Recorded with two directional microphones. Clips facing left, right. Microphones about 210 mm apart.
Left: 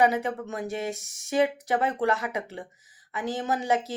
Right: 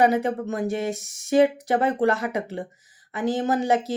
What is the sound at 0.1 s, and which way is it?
Speech, 35° right (ahead or behind).